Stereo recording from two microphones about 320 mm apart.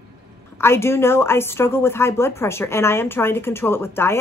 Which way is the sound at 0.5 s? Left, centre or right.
Centre.